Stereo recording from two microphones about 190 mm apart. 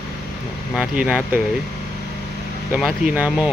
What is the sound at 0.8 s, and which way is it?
Speech, 5° right (ahead or behind).